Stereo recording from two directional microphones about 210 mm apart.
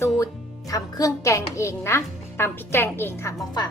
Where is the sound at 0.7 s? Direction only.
15° left (ahead or behind).